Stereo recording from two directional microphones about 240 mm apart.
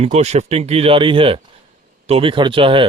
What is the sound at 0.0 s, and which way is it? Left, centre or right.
Speech, right.